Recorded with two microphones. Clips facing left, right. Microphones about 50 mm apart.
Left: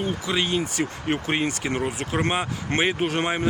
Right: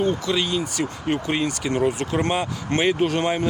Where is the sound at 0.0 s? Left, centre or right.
Centre.